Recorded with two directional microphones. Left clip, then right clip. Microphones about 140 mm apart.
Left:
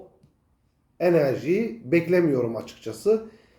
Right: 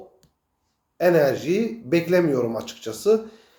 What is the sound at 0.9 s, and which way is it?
Speech, 20° left (ahead or behind).